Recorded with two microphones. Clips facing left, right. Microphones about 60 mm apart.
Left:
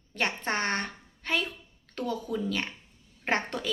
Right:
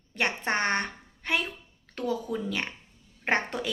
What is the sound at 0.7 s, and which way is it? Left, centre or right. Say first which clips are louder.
A woman's voice: right 3 dB; centre.